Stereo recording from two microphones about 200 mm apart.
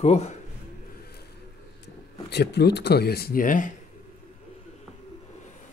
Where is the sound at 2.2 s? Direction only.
55° left (ahead or behind); by 3.7 s 40° left (ahead or behind).